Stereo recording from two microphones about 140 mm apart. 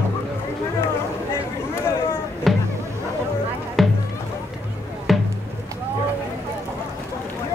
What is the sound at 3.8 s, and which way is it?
Music, centre (ahead or behind).